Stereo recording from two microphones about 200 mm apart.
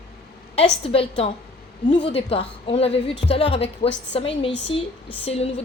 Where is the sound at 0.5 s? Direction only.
30° left (ahead or behind).